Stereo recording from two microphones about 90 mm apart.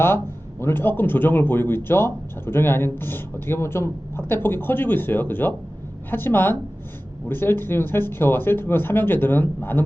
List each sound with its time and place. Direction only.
0.6 s speech: 25° left (ahead or behind)